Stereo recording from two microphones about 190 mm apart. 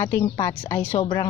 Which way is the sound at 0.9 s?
25° left (ahead or behind).